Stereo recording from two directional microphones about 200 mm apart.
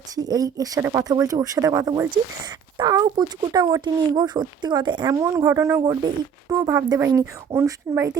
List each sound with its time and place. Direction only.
0.2 s speech: 20° right (ahead or behind)